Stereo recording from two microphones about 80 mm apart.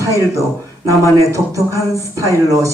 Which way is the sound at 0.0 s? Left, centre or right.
Right.